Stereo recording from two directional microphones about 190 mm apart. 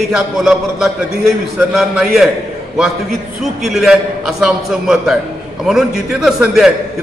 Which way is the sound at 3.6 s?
Centre (ahead or behind).